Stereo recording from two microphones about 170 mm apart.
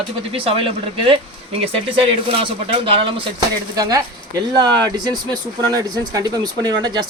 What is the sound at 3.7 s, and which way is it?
Speech, 20° right (ahead or behind).